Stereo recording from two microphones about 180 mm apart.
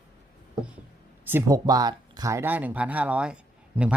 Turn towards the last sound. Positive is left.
turn(degrees=-5)  # may be behind; listen again after turning